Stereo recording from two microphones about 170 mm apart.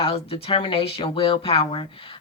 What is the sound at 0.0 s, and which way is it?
Speech, 35° left (ahead or behind).